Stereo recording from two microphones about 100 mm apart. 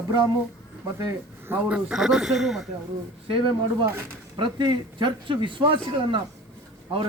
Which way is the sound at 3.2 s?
65° right (ahead or behind).